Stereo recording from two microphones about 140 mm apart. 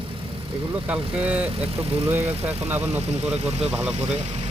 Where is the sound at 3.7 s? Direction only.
5° right (ahead or behind).